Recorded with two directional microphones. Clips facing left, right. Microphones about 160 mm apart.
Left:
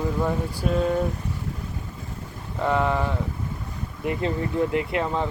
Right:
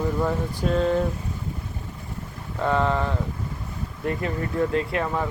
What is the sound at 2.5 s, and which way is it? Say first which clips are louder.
Speech: even; 15° left (ahead or behind).